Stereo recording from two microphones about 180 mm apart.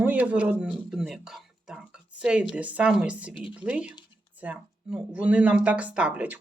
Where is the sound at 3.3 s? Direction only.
30° left (ahead or behind).